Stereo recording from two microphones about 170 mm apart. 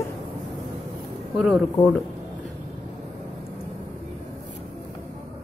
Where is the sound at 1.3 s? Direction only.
Centre (ahead or behind).